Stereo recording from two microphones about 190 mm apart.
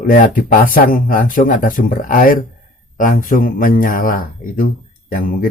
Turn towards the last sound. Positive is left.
turn(degrees=45)  # may be behind; listen again after turning